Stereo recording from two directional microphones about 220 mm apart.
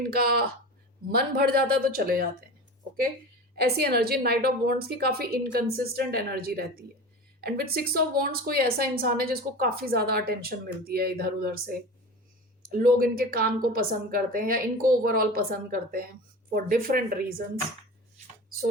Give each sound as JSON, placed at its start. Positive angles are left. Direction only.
{"t": 0.1, "sound": "a woman's voice", "side_deg": -45}
{"t": 3.5, "sound": "a woman's voice", "side_deg": -45}